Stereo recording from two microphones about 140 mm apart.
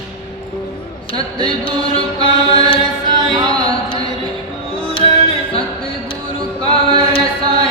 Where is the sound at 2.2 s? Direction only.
35° right (ahead or behind).